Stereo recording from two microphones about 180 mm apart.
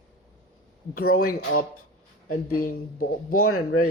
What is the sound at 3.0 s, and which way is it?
Speech, 50° left (ahead or behind).